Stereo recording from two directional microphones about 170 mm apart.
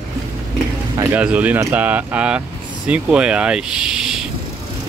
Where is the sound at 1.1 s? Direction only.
10° right (ahead or behind).